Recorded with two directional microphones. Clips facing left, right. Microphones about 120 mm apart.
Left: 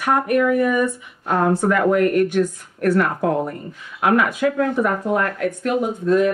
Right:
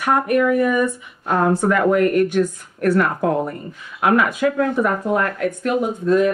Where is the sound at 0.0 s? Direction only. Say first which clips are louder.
Right 1 dB; 20° right (ahead or behind).